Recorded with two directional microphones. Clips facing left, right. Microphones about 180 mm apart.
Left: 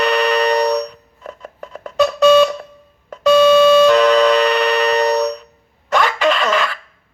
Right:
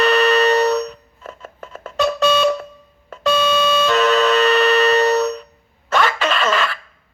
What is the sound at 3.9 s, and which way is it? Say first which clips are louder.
Music: left 4 dB; 15° left (ahead or behind).